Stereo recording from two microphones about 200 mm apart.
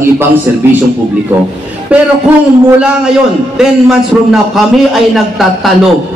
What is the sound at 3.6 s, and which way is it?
A man's voice, 5° right (ahead or behind).